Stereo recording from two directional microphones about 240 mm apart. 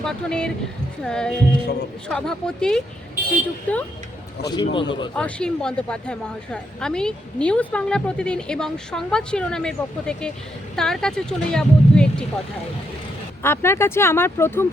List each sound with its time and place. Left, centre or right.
0.0 s speech: centre
4.4 s speech: centre
5.1 s speech: centre
13.4 s speech: centre